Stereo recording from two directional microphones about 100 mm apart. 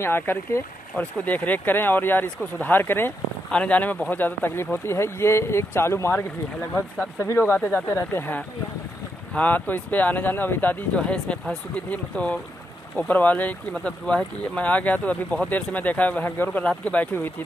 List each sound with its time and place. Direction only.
0.0 s speech: 25° left (ahead or behind)